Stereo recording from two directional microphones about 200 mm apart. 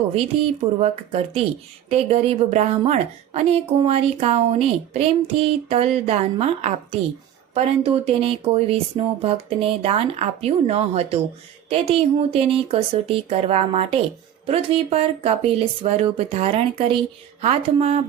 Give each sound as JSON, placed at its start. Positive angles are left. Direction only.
{"t": 0.6, "sound": "a woman's voice", "side_deg": -30}